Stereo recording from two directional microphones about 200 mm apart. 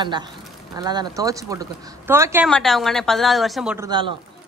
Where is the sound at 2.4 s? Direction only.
Centre (ahead or behind).